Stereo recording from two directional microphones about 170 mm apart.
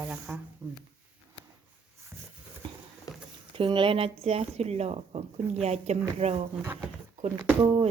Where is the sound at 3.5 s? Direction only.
30° right (ahead or behind).